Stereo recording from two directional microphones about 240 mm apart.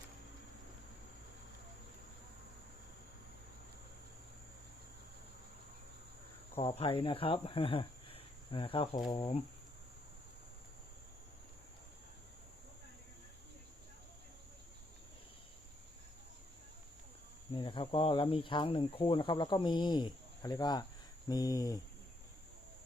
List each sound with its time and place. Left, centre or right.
6.6 s speech: centre
17.5 s speech: left